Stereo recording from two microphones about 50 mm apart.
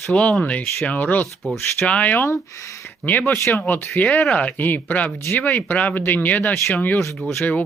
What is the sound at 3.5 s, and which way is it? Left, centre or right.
Speech, left.